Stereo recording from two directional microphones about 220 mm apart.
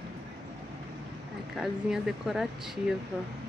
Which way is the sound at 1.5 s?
Centre (ahead or behind).